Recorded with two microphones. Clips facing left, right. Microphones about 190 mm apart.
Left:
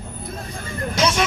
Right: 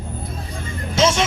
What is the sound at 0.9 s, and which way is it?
Music, 25° right (ahead or behind).